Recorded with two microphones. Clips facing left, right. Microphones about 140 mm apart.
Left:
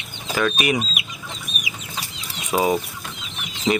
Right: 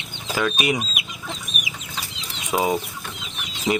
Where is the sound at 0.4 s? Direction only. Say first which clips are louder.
Left 2 dB; 15° right (ahead or behind).